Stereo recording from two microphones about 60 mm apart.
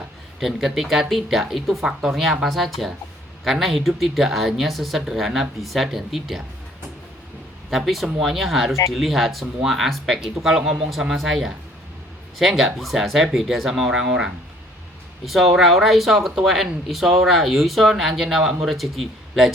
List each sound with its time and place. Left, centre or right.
0.3 s speech: centre
2.4 s speech: centre
7.7 s speech: centre